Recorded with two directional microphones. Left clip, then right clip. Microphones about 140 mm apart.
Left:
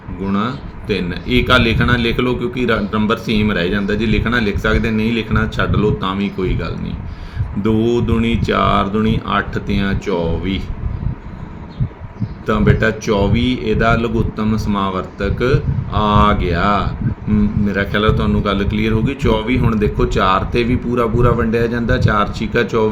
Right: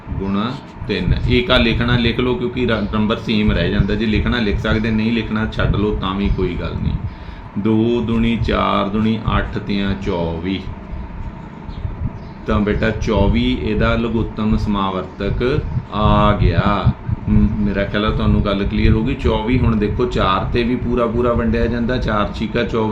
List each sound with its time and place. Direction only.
0.3 s speech: 45° left (ahead or behind)
12.5 s speech: 45° left (ahead or behind)